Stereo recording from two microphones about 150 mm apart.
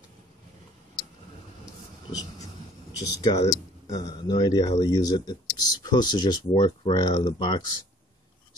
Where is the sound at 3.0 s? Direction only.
25° left (ahead or behind).